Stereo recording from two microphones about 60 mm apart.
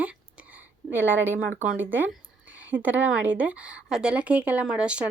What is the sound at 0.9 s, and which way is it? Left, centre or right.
A woman's voice, right.